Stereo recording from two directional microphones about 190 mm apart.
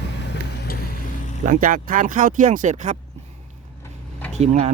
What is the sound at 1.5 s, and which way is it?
Speech, 45° right (ahead or behind).